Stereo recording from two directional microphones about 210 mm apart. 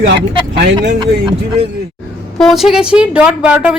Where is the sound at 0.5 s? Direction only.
50° right (ahead or behind).